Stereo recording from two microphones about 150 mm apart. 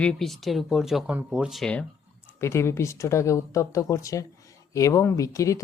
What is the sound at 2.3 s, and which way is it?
Speech, 20° left (ahead or behind).